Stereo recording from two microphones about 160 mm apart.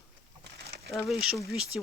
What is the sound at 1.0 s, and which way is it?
Speech, centre (ahead or behind).